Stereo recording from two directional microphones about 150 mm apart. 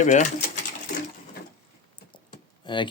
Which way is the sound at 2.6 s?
30° left (ahead or behind).